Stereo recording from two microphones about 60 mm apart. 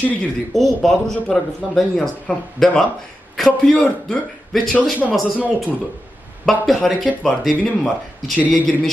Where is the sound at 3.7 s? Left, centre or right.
Centre.